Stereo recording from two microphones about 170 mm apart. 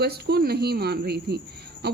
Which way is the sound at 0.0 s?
70° right (ahead or behind).